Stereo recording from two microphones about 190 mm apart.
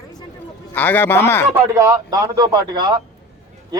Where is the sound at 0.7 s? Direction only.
10° left (ahead or behind).